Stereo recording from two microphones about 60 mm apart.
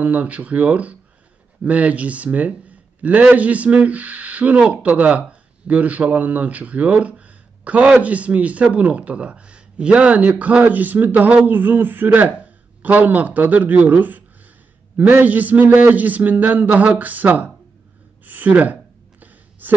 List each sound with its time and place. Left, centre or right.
0.0 s a man's voice: right
10.6 s a man's voice: right
18.2 s gasp: right